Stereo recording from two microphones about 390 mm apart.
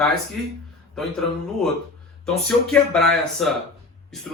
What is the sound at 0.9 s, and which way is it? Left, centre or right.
Speech, centre.